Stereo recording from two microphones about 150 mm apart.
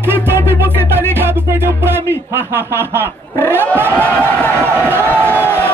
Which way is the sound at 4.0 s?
10° left (ahead or behind).